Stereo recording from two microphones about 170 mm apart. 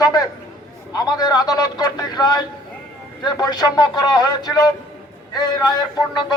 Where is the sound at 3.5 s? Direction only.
25° left (ahead or behind).